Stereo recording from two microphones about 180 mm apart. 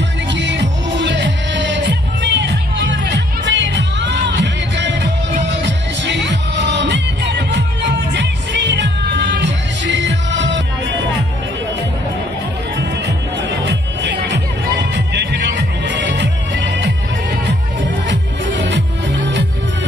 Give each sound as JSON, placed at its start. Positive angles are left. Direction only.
{"t": 0.3, "sound": "music", "side_deg": -80}
{"t": 13.7, "sound": "music", "side_deg": -75}
{"t": 18.0, "sound": "music", "side_deg": -85}